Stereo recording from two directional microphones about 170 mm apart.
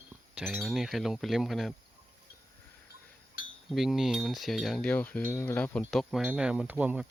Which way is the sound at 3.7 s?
Centre (ahead or behind).